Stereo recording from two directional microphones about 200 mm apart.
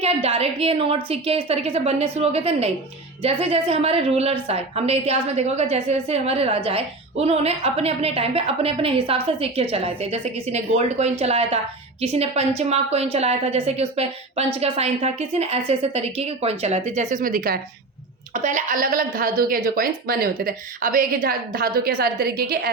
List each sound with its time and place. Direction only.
0.0 s a woman's voice: 30° right (ahead or behind); by 22.7 s 50° right (ahead or behind)